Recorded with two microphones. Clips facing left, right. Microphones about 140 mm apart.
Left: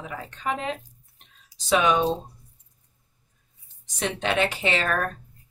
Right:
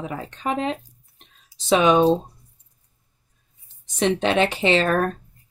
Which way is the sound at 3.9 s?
25° right (ahead or behind).